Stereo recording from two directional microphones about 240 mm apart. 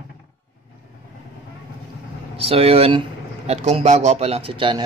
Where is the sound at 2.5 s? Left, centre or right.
Right.